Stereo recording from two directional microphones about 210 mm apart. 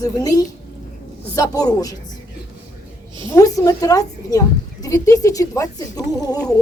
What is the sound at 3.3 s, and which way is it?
A woman's voice, 15° left (ahead or behind).